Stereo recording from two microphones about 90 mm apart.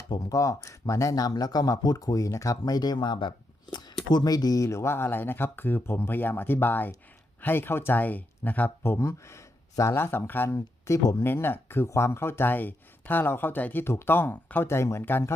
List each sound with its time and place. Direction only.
0.1 s speech: 40° left (ahead or behind); by 9.0 s 20° left (ahead or behind)
9.0 s speech: 35° left (ahead or behind)